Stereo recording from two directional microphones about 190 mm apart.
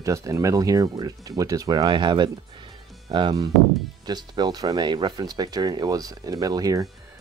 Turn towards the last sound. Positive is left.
turn(degrees=-20)  # may be behind; listen again after turning